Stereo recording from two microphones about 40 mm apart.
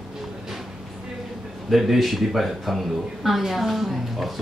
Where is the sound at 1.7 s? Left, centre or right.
Centre.